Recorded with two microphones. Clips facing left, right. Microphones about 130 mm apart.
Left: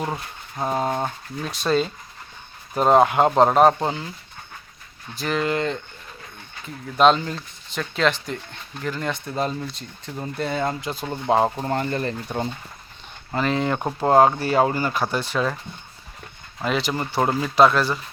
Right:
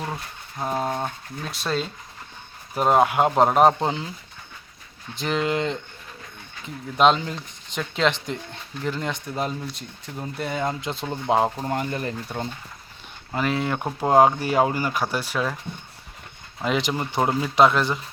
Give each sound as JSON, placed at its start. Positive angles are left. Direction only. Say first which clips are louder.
{"t": 0.6, "sound": "speech", "louder": "left 2 dB", "side_deg": 5}
{"t": 1.5, "sound": "speech", "louder": "left 5 dB", "side_deg": 0}
{"t": 5.1, "sound": "speech", "louder": "left 1 dB", "side_deg": -20}
{"t": 6.9, "sound": "speech", "louder": "left 2 dB", "side_deg": -15}
{"t": 10.8, "sound": "speech", "louder": "left 1 dB", "side_deg": -25}
{"t": 11.3, "sound": "speech", "louder": "left 1 dB", "side_deg": 5}
{"t": 11.7, "sound": "speech", "louder": "left 2 dB", "side_deg": -10}
{"t": 13.3, "sound": "speech", "louder": "left 2 dB", "side_deg": -10}
{"t": 16.6, "sound": "speech", "louder": "even", "side_deg": -15}